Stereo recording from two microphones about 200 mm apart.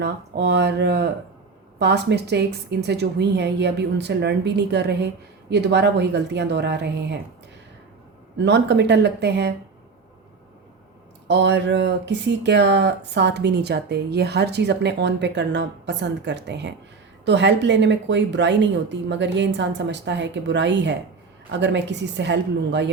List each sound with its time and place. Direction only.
0.0 s speech: 60° right (ahead or behind)
8.4 s speech: 60° right (ahead or behind)
11.3 s speech: 60° right (ahead or behind)